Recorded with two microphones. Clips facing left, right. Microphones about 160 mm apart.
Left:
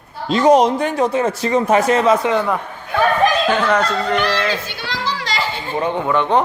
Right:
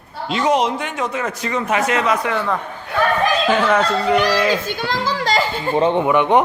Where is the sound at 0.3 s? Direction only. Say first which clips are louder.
Left 5 dB; 35° left (ahead or behind).